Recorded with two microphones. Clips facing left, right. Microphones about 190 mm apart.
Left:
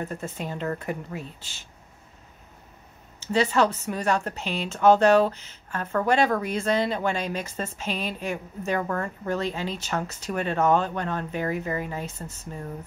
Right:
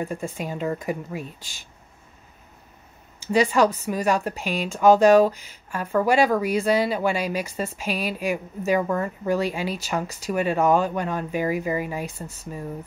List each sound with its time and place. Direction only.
0.0 s speech: 10° right (ahead or behind)
3.2 s speech: 10° right (ahead or behind)